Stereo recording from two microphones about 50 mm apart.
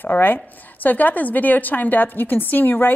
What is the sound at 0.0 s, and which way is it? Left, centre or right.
A woman's voice, left.